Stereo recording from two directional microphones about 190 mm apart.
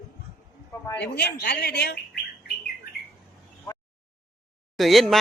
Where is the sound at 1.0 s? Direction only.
60° left (ahead or behind).